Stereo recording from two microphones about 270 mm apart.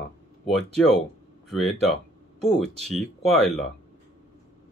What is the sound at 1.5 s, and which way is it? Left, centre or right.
Speech, centre.